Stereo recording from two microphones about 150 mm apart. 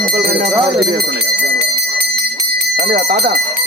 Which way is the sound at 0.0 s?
90° right.